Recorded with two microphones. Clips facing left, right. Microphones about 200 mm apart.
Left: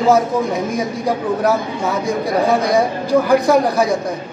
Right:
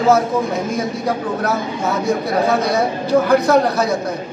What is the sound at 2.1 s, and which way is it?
Speech, 15° left (ahead or behind).